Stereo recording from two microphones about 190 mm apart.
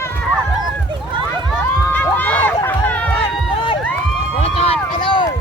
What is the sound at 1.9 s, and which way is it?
Run, 5° left (ahead or behind).